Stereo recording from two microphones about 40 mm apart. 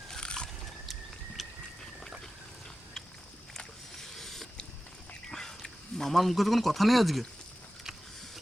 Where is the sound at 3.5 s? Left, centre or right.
Centre.